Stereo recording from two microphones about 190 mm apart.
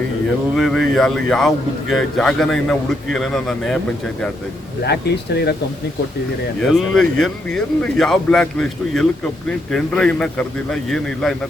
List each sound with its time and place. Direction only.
0.5 s speech: centre (ahead or behind)
4.8 s speech: 60° left (ahead or behind)
6.6 s speech: centre (ahead or behind)